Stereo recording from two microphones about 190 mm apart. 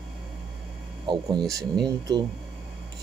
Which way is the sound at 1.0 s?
25° right (ahead or behind).